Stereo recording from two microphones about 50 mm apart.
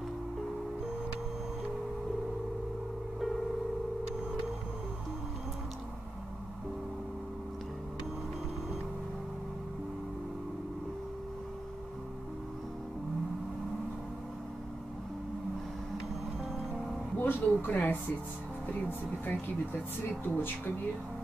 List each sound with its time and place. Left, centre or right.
17.2 s speech: left